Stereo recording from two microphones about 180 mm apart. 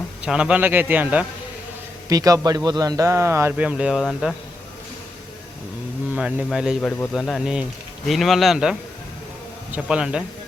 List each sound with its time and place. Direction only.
0.3 s speech: 5° right (ahead or behind)
6.1 s speech: 5° right (ahead or behind)
9.7 s speech: 5° right (ahead or behind)